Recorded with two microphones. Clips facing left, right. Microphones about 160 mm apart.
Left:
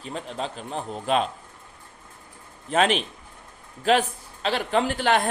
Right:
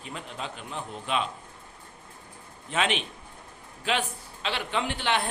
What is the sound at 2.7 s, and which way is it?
A woman's voice, 40° left (ahead or behind).